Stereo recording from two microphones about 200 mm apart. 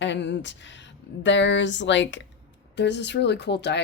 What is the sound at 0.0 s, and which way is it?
Speech, 60° left (ahead or behind).